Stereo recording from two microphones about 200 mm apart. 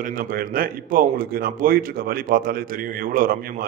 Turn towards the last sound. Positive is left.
turn(degrees=-45)  # may be behind; listen again after turning